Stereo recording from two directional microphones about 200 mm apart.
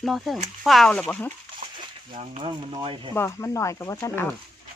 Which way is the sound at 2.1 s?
30° right (ahead or behind).